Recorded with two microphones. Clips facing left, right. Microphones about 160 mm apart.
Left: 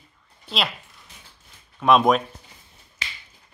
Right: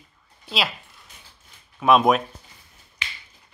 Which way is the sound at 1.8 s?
Centre (ahead or behind).